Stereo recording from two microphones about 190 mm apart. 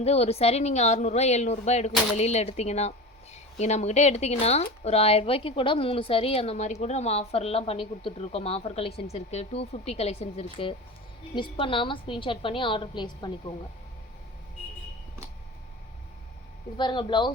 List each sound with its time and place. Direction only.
0.0 s a woman's voice: 35° left (ahead or behind)
16.7 s a woman's voice: 25° left (ahead or behind)